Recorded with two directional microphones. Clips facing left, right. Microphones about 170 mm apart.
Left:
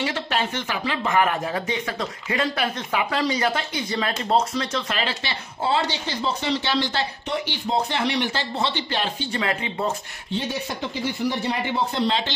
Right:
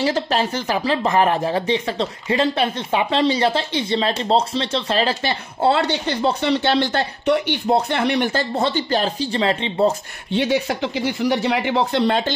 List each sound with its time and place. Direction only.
0.0 s speech: 35° right (ahead or behind)
5.2 s speech: 55° right (ahead or behind); by 9.9 s 30° right (ahead or behind)
10.3 s speech: 85° right